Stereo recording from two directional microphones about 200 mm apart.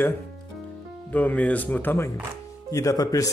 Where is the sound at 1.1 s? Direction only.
10° left (ahead or behind).